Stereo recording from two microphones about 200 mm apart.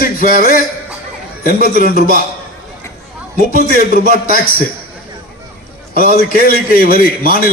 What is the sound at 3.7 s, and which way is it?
Speech, 45° left (ahead or behind).